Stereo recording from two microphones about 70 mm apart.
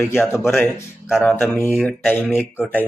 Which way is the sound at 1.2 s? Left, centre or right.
Centre.